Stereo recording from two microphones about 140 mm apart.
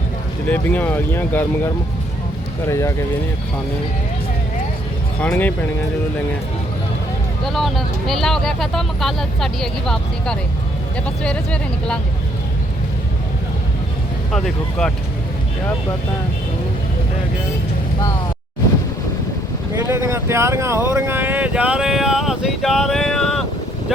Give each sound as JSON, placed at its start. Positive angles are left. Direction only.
{"t": 0.4, "sound": "speech", "side_deg": 10}
{"t": 2.6, "sound": "speech", "side_deg": 20}
{"t": 5.2, "sound": "speech", "side_deg": 10}
{"t": 7.4, "sound": "speech", "side_deg": 0}
{"t": 14.3, "sound": "speech", "side_deg": 5}
{"t": 19.7, "sound": "speech", "side_deg": -20}